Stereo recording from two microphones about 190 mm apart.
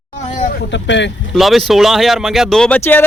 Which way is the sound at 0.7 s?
70° left (ahead or behind).